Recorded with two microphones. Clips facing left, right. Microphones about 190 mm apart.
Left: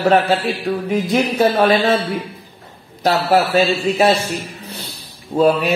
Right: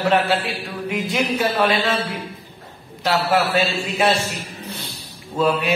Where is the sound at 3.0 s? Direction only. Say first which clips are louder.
Left 4 dB; 40° left (ahead or behind).